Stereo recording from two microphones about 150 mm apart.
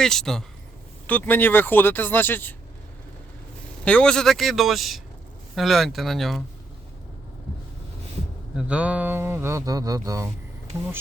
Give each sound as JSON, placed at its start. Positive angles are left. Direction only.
{"t": 0.0, "sound": "speech", "side_deg": 5}
{"t": 3.8, "sound": "speech", "side_deg": 5}
{"t": 8.5, "sound": "speech", "side_deg": -10}